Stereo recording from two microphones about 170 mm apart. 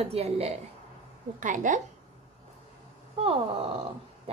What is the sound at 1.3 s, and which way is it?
Speech, 50° right (ahead or behind).